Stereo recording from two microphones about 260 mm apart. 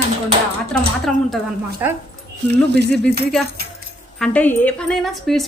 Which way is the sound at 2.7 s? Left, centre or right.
Right.